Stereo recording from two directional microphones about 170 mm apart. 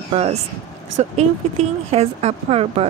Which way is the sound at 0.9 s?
40° right (ahead or behind).